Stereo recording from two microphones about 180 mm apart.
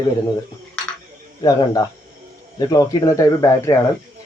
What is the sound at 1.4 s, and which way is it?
Speech, 20° left (ahead or behind).